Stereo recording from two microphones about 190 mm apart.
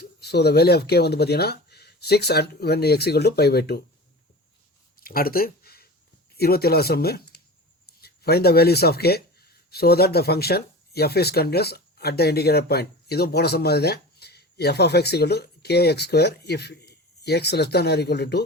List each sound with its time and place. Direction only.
0.0 s speech: 60° left (ahead or behind)
4.9 s a sound: 50° left (ahead or behind)
6.3 s speech: 55° left (ahead or behind)